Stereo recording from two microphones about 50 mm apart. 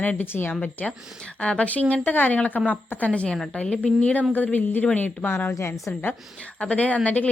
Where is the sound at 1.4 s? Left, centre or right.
Left.